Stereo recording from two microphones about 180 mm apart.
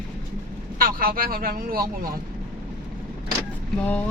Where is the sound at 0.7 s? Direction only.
55° right (ahead or behind).